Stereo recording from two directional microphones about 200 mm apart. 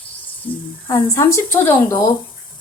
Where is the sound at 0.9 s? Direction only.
15° left (ahead or behind).